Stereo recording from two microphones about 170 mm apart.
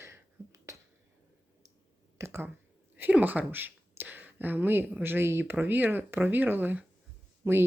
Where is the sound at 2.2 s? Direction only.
15° right (ahead or behind).